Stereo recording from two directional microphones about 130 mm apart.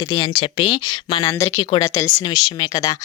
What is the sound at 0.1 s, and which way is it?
Speech, 40° left (ahead or behind).